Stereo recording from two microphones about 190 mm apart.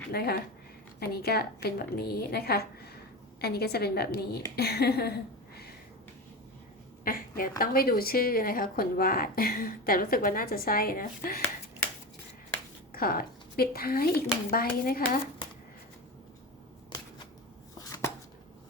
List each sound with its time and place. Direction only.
0.1 s a woman's voice: 55° left (ahead or behind)
7.0 s a sound: 50° left (ahead or behind)
7.6 s speech: 50° left (ahead or behind)
12.9 s speech: 50° left (ahead or behind)
17.8 s chopping: 15° left (ahead or behind)